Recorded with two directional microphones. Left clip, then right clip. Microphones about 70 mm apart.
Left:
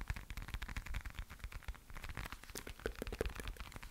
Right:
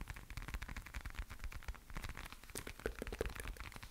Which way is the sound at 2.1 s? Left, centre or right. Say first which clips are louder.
Left 2 dB; centre.